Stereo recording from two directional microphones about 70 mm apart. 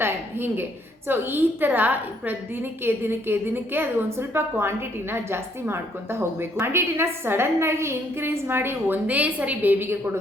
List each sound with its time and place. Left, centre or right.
0.0 s a woman's voice: right
9.0 s a woman's voice: right